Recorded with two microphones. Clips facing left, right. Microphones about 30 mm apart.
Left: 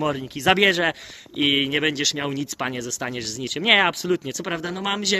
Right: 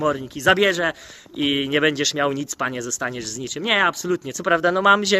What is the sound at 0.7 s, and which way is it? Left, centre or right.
Speech, left.